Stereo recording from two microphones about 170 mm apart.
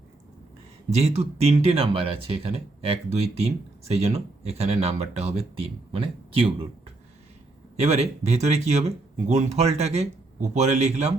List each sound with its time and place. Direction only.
0.9 s speech: 40° right (ahead or behind)
7.8 s speech: 40° right (ahead or behind)